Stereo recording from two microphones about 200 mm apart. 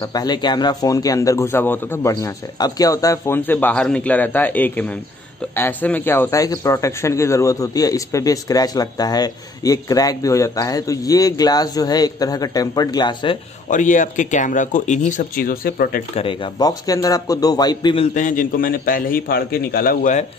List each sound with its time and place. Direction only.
0.0 s speech: 20° left (ahead or behind)
13.7 s speech: 40° left (ahead or behind)
16.2 s a man's voice: 25° left (ahead or behind)
18.1 s a man's voice: 40° left (ahead or behind)